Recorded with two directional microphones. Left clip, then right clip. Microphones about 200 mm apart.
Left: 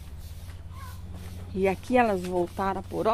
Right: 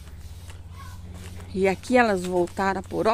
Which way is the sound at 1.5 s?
10° right (ahead or behind).